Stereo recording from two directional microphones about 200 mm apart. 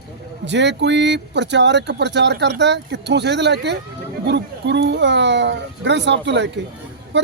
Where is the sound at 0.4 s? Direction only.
60° right (ahead or behind).